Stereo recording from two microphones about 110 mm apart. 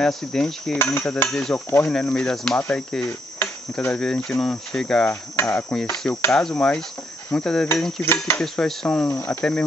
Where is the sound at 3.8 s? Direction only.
10° left (ahead or behind).